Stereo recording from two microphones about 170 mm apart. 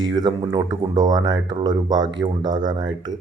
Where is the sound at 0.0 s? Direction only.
25° right (ahead or behind).